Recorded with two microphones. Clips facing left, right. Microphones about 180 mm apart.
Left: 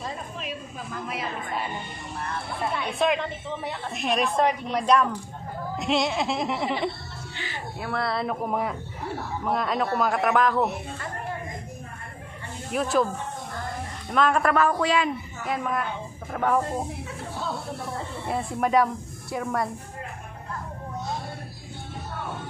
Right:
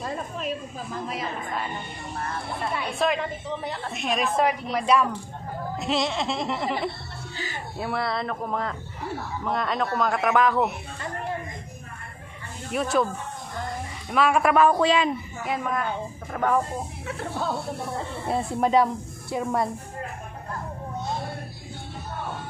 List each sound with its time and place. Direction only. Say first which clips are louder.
0.0 s a sound: right 4 dB; 45° right (ahead or behind)
2.7 s a man's voice: even; 10° right (ahead or behind)
3.4 s a woman's voice: right 1 dB; centre (ahead or behind)
7.9 s a woman's voice: left 1 dB; centre (ahead or behind)
12.7 s a woman's voice: even; centre (ahead or behind)
14.1 s a man's voice: right 1 dB; 10° right (ahead or behind)
15.4 s a woman's voice: even; centre (ahead or behind)
18.2 s speech: right 2 dB; 30° right (ahead or behind)